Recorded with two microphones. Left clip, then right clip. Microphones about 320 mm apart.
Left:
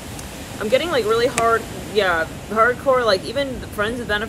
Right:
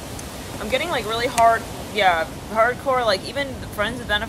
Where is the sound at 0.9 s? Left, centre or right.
Centre.